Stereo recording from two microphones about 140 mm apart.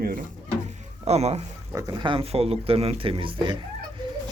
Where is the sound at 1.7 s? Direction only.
30° right (ahead or behind).